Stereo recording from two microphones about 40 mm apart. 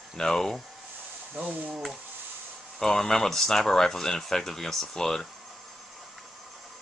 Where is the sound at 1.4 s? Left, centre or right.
Right.